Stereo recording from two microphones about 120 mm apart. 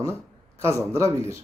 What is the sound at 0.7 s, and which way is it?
Speech, 25° right (ahead or behind).